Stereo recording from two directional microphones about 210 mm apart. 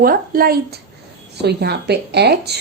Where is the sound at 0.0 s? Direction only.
45° right (ahead or behind).